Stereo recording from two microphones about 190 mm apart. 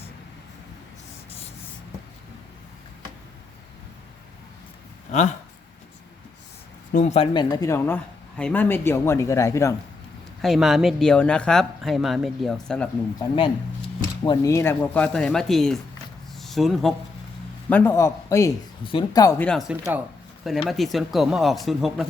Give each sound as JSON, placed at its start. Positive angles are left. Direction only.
{"t": 6.9, "sound": "speech", "side_deg": 35}
{"t": 7.3, "sound": "speech", "side_deg": 20}
{"t": 10.4, "sound": "speech", "side_deg": 0}
{"t": 13.1, "sound": "speech", "side_deg": 25}
{"t": 14.3, "sound": "speech", "side_deg": 15}
{"t": 19.5, "sound": "speech", "side_deg": 0}